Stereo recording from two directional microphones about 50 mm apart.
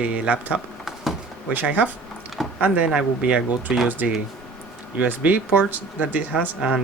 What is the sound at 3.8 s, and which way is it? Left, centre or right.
Speech, right.